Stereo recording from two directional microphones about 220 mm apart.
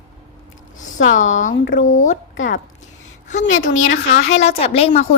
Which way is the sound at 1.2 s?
35° left (ahead or behind).